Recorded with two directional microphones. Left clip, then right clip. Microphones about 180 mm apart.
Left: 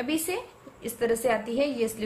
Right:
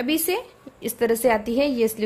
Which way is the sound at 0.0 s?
45° right (ahead or behind).